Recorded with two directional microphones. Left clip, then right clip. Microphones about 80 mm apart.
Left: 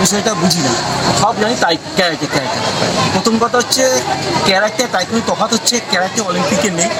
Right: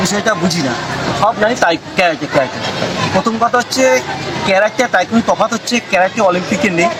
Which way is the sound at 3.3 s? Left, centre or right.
Right.